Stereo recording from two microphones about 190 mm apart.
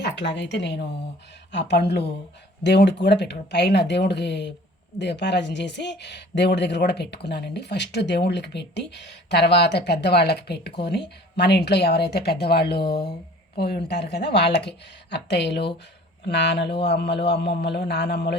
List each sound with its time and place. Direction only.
0.0 s speech: 65° left (ahead or behind)